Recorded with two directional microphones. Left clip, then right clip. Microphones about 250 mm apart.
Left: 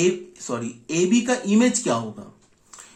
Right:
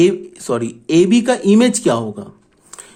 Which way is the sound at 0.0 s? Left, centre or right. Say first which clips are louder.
Right 8 dB; right.